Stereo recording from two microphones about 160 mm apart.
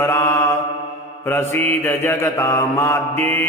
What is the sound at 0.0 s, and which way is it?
Mantra, 15° left (ahead or behind).